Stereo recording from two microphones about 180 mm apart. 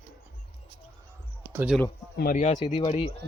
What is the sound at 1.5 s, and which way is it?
Speech, 10° right (ahead or behind).